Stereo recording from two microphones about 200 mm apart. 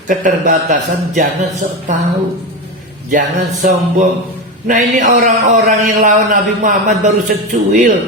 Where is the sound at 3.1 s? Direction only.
40° right (ahead or behind).